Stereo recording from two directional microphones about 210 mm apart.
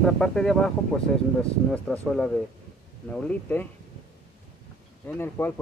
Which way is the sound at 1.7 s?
5° left (ahead or behind).